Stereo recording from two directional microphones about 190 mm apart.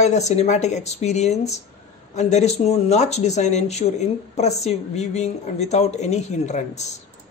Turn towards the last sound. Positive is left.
turn(degrees=35)  # may be behind; listen again after turning